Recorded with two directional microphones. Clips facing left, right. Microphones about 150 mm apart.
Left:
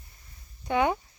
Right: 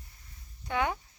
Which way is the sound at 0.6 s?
20° left (ahead or behind).